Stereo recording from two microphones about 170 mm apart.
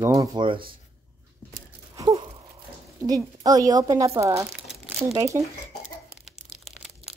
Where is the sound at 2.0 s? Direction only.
25° right (ahead or behind).